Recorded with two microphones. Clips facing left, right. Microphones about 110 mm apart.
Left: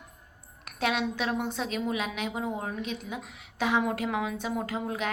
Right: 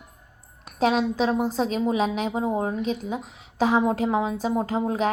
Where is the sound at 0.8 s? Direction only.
35° right (ahead or behind).